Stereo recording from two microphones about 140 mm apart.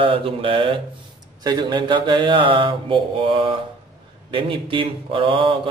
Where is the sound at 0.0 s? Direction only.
40° right (ahead or behind).